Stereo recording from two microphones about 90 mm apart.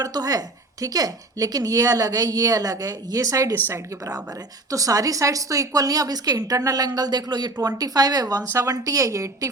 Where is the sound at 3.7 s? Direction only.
30° right (ahead or behind).